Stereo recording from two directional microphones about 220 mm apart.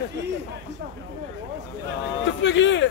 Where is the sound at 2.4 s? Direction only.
55° left (ahead or behind).